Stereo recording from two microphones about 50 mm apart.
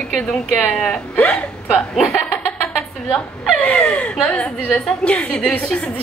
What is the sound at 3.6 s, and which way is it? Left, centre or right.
A woman's voice, left.